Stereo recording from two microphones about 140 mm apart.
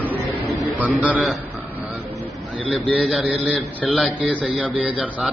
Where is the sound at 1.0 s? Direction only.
10° right (ahead or behind).